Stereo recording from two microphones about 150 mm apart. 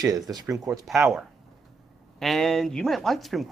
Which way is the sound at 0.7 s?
Centre (ahead or behind).